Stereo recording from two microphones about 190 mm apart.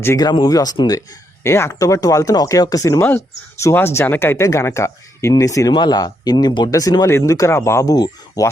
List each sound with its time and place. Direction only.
0.0 s speech: 15° left (ahead or behind)